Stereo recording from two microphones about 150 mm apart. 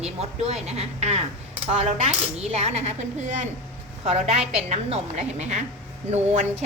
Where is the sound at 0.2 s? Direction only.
45° right (ahead or behind).